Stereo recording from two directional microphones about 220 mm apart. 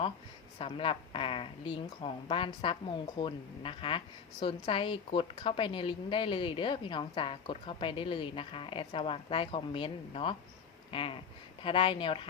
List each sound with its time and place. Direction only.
0.6 s speech: 25° left (ahead or behind)